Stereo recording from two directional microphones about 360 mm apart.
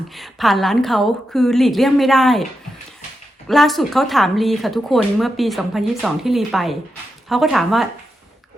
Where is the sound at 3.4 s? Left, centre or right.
Centre.